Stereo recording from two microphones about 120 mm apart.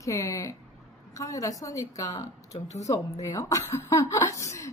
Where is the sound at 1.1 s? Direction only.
30° left (ahead or behind).